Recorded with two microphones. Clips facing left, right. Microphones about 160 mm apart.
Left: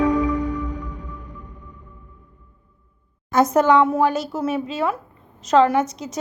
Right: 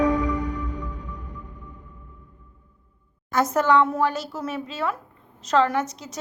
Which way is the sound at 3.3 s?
20° left (ahead or behind).